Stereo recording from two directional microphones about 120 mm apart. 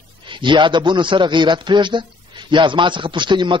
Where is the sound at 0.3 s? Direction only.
40° right (ahead or behind).